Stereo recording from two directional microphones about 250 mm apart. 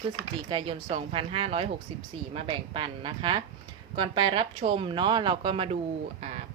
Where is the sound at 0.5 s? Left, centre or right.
Right.